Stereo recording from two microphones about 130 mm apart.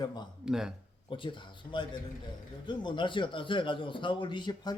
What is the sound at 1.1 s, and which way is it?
A man's voice, 40° left (ahead or behind).